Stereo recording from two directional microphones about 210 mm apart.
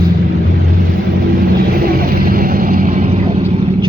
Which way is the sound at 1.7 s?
45° right (ahead or behind).